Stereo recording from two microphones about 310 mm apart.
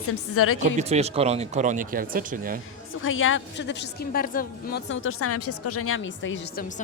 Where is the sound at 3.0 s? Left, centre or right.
Left.